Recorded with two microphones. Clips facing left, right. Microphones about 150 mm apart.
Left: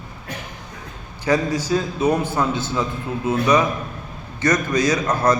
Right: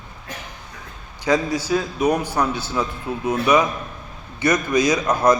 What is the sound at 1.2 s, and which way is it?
A man's voice, 10° right (ahead or behind).